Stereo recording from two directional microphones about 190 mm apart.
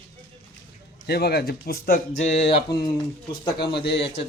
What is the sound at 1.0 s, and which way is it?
Speech, 60° left (ahead or behind).